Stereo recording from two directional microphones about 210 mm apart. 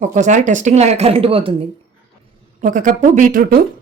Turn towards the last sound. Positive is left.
turn(degrees=-40)  # may be behind; listen again after turning